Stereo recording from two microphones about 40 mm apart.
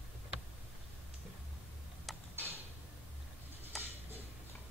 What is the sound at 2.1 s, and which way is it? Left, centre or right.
Tick-tock, centre.